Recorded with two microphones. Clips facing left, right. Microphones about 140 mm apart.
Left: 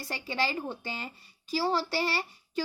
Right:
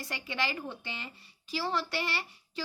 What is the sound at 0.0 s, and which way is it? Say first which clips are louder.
Speech: left 3 dB; 35° left (ahead or behind).